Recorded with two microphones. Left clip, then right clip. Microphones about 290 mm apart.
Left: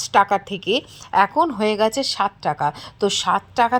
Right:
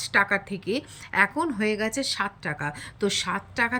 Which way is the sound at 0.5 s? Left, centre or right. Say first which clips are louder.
Left 8 dB; centre.